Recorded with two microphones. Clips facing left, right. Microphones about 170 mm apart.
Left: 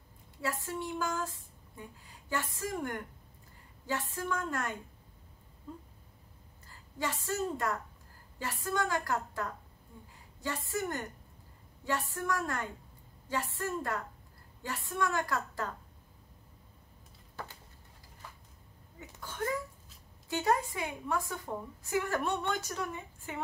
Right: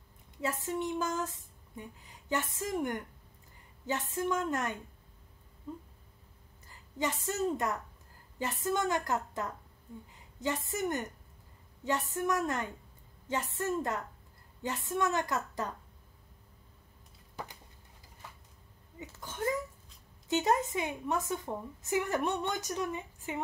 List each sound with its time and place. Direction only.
0.4 s a woman's voice: 20° right (ahead or behind)
6.7 s a woman's voice: 20° right (ahead or behind)
18.9 s a woman's voice: 20° right (ahead or behind)